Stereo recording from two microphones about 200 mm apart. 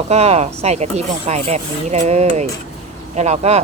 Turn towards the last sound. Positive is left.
turn(degrees=-35)  # may be behind; listen again after turning